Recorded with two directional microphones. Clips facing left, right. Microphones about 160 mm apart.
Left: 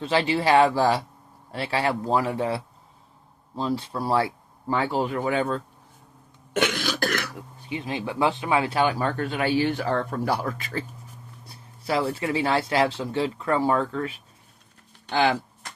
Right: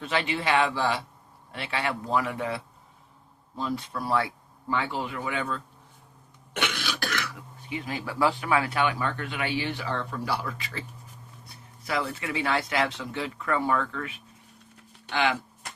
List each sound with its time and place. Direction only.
0.0 s speech: 30° left (ahead or behind)
6.5 s cough: 45° left (ahead or behind)
7.6 s speech: 25° left (ahead or behind); by 10.8 s 45° left (ahead or behind)
11.4 s speech: 30° left (ahead or behind)